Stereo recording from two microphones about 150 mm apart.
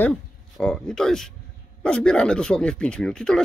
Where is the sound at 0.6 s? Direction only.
5° left (ahead or behind).